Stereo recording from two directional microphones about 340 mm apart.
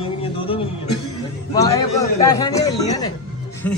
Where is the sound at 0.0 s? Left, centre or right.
Centre.